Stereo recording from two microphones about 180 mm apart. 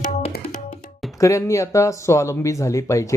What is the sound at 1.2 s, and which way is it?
Speech, 15° left (ahead or behind).